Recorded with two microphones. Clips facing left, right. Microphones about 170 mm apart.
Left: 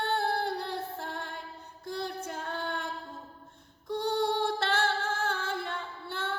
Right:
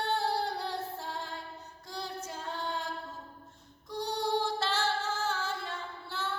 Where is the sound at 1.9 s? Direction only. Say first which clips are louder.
Left 4 dB; 55° left (ahead or behind).